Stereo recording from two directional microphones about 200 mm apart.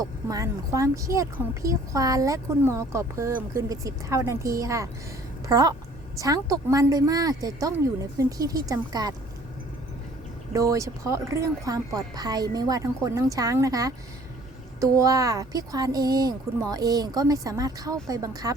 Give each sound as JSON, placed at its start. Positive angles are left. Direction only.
{"t": 0.0, "sound": "speech", "side_deg": -15}
{"t": 10.5, "sound": "speech", "side_deg": -15}